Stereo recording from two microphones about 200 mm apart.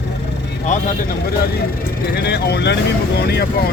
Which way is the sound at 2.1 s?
55° left (ahead or behind).